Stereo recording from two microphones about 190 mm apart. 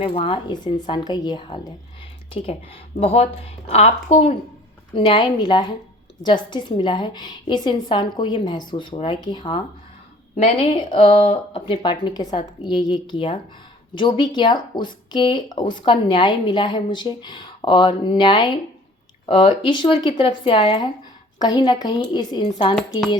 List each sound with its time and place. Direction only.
0.0 s speech: 30° left (ahead or behind)
3.0 s speech: 30° left (ahead or behind)